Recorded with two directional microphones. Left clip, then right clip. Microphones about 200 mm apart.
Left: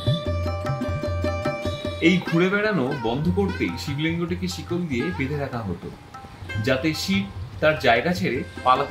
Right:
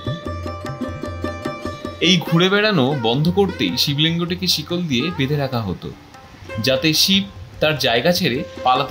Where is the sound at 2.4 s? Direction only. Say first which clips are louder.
Right 5 dB; 45° right (ahead or behind).